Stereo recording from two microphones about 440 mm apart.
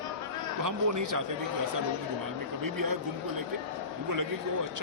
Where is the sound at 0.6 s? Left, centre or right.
Right.